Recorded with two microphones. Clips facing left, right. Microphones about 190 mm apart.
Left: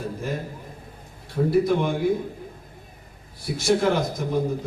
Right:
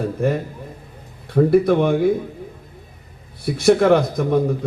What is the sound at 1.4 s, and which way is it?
Speech, 60° right (ahead or behind).